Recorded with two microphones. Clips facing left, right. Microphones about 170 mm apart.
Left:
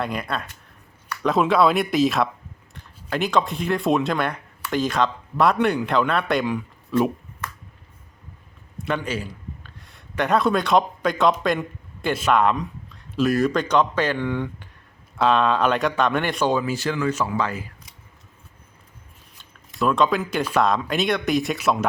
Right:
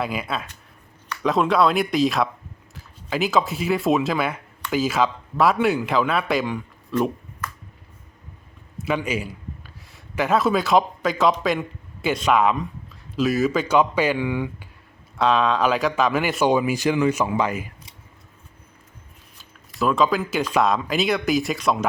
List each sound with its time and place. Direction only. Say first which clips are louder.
0.0 s speech: even; 5° right (ahead or behind)
8.8 s a man's voice: right 2 dB; 5° right (ahead or behind)
19.4 s speech: even; centre (ahead or behind)